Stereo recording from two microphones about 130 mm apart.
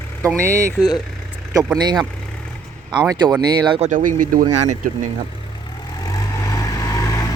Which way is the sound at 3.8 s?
80° right.